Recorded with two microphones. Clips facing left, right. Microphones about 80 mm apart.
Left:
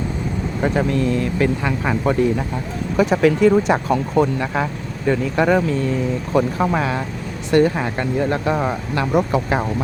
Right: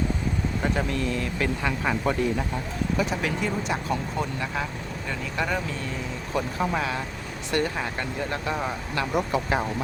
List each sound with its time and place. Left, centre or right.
0.6 s speech: left
3.0 s speech: left
7.5 s speech: left